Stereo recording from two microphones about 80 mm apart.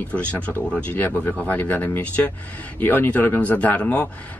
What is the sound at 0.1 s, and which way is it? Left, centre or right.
Speech, centre.